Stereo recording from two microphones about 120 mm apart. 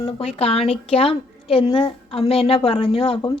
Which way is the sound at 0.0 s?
55° left (ahead or behind).